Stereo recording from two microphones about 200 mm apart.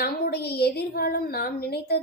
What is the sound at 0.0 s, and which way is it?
A woman's voice, 50° left (ahead or behind).